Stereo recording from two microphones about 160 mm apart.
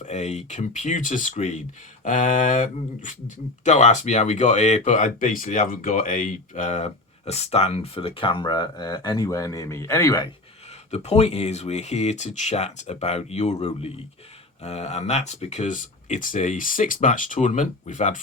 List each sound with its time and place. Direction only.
0.0 s speech: 45° left (ahead or behind); by 10.2 s 20° left (ahead or behind)
10.9 s speech: 45° left (ahead or behind)